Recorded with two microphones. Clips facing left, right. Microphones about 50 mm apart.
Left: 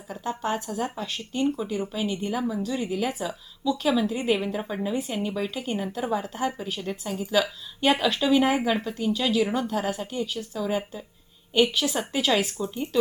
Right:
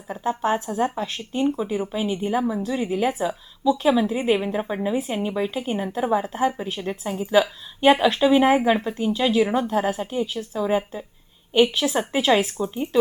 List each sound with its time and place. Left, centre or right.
0.3 s a woman's voice: centre
4.4 s a woman's voice: right